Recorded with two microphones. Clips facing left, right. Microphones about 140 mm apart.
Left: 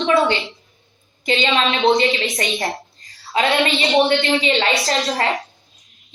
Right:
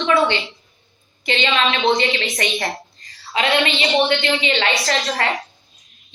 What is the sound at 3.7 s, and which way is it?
Speech, centre (ahead or behind).